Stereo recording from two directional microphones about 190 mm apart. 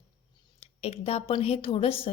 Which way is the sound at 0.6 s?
30° left (ahead or behind).